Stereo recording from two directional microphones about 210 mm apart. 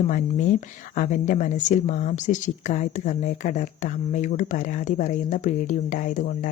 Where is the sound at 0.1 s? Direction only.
35° left (ahead or behind).